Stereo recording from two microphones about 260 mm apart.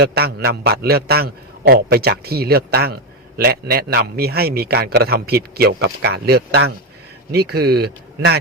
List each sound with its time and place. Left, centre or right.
0.0 s a man's voice: right